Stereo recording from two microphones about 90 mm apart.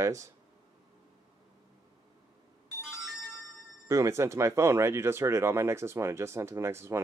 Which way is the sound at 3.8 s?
35° right (ahead or behind).